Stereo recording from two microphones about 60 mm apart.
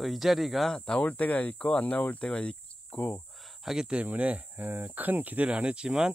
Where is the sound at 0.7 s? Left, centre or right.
Centre.